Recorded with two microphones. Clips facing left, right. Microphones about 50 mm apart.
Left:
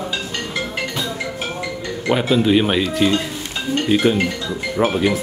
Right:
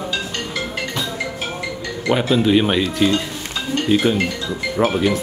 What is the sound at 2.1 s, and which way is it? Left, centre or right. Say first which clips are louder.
A man's voice: even; centre.